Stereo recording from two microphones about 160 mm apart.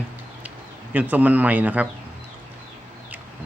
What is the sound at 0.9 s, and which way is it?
Speech, 10° right (ahead or behind).